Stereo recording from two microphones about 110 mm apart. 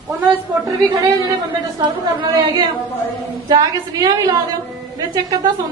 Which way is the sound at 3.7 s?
35° right (ahead or behind).